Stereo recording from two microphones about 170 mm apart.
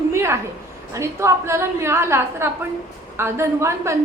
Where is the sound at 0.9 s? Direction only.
15° right (ahead or behind).